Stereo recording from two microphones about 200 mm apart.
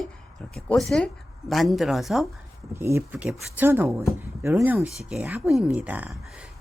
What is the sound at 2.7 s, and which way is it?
Speech, 10° right (ahead or behind).